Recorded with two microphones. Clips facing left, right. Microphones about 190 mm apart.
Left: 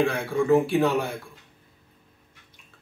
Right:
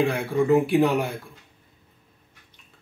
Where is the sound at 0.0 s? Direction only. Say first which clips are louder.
Right 1 dB; 15° right (ahead or behind).